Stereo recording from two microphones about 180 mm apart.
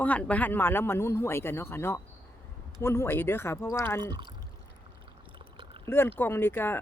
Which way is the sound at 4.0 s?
25° right (ahead or behind).